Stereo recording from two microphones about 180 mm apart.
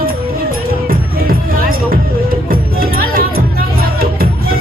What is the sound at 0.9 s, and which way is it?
Music, 50° right (ahead or behind).